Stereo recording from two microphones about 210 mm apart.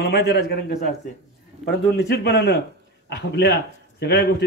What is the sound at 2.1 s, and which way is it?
A man's voice, 55° left (ahead or behind).